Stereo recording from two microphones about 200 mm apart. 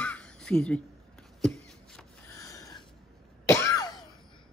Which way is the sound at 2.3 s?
15° left (ahead or behind).